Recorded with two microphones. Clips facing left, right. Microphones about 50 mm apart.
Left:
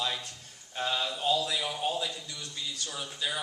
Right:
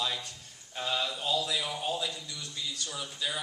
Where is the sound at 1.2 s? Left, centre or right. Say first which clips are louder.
Left 5 dB; left.